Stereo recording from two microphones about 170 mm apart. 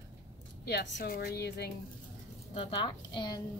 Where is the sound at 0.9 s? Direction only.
65° left (ahead or behind).